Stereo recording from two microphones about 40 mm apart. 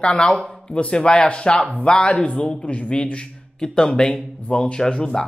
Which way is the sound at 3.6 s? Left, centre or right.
Left.